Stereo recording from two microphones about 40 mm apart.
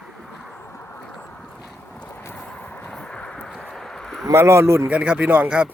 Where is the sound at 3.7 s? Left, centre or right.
Centre.